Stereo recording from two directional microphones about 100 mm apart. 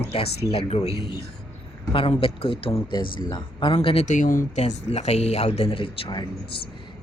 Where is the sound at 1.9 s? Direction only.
65° left (ahead or behind).